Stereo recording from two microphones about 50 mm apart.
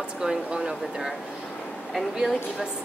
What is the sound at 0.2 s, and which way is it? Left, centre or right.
Speech, centre.